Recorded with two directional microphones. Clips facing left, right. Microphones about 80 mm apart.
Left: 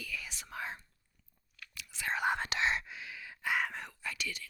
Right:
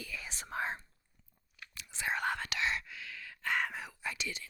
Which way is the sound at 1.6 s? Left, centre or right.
Right.